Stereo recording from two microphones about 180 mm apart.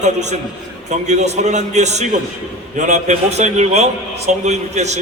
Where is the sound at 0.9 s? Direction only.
40° right (ahead or behind).